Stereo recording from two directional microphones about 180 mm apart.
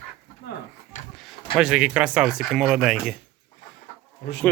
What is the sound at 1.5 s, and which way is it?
Speech, 5° right (ahead or behind).